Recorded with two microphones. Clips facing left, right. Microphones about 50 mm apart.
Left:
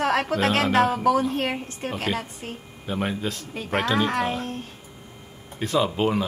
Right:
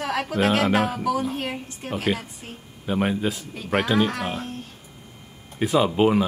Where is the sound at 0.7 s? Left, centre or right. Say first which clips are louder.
Left 2 dB; centre.